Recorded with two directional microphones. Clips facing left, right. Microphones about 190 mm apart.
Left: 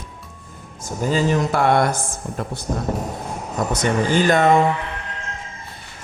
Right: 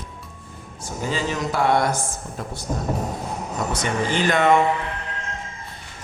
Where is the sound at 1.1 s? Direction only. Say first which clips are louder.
Left 6 dB; 50° left (ahead or behind).